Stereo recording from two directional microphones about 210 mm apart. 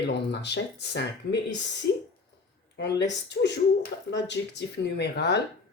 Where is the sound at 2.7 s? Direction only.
55° left (ahead or behind).